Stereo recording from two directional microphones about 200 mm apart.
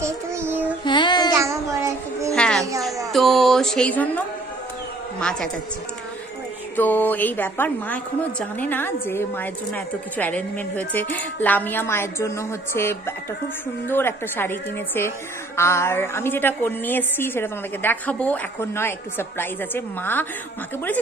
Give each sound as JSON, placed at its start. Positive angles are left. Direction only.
{"t": 0.0, "sound": "child singing", "side_deg": -15}
{"t": 0.8, "sound": "child singing", "side_deg": 25}
{"t": 1.3, "sound": "child singing", "side_deg": -15}
{"t": 2.3, "sound": "a sound", "side_deg": 5}
{"t": 6.8, "sound": "a woman's voice", "side_deg": 10}